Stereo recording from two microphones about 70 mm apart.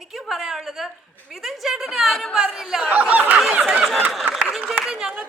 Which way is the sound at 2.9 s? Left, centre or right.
Right.